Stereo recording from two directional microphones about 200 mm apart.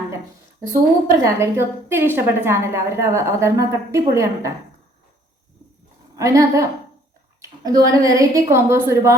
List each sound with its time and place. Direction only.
1.2 s a woman's voice: 15° right (ahead or behind)
6.1 s a woman's voice: 15° right (ahead or behind)